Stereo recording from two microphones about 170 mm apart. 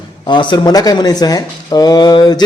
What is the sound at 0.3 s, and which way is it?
A man's voice, 25° left (ahead or behind).